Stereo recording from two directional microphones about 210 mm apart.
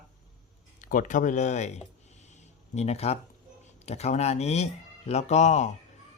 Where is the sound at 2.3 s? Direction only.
30° left (ahead or behind).